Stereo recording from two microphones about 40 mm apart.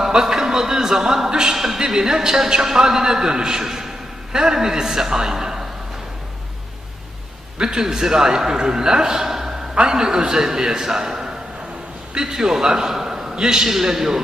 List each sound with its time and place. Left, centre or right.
0.1 s a sound: centre
1.5 s a man's voice: centre
7.6 s a man's voice: centre